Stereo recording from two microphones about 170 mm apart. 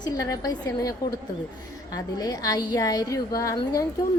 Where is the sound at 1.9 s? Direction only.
20° left (ahead or behind).